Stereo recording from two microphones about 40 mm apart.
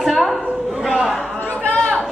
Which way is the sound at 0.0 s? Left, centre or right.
Centre.